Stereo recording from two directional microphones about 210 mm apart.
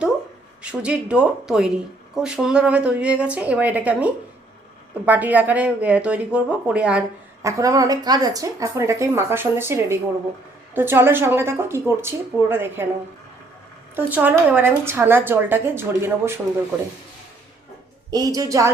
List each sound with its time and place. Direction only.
0.6 s a woman's voice: 5° right (ahead or behind)
13.9 s a woman's voice: 10° right (ahead or behind)
18.1 s a woman's voice: 15° right (ahead or behind)